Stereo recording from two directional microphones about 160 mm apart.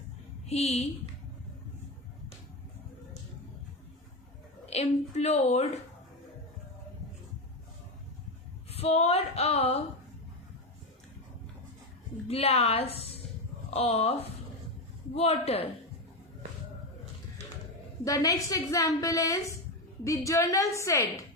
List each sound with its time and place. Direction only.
0.4 s a woman's voice: 40° left (ahead or behind)
4.6 s a woman's voice: 40° left (ahead or behind)
8.7 s female singing: 40° left (ahead or behind)
12.3 s female singing: 40° left (ahead or behind)
18.0 s a woman's voice: 20° left (ahead or behind)